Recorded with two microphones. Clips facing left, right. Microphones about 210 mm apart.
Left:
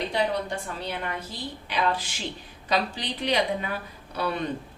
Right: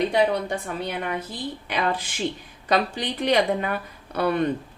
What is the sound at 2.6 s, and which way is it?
A woman's voice, 55° right (ahead or behind).